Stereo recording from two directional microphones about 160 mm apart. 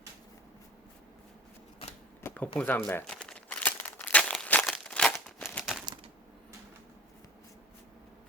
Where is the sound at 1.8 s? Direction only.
35° left (ahead or behind).